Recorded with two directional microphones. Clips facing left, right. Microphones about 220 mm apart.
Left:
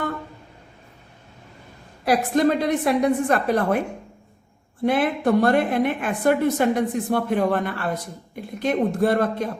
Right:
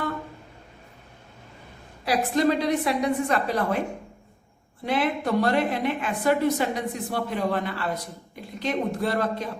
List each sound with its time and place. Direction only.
2.0 s a woman's voice: 50° left (ahead or behind)
4.9 s a woman's voice: 50° left (ahead or behind)